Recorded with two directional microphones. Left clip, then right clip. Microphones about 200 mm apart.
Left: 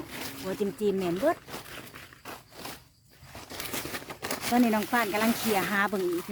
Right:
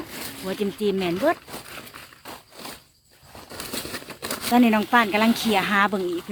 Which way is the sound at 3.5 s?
55° right (ahead or behind).